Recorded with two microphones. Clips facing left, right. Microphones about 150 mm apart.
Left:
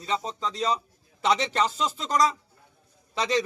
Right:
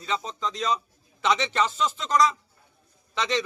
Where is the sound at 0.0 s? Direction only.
35° left (ahead or behind).